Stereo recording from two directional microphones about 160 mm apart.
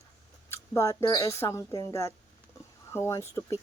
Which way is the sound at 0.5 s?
15° left (ahead or behind).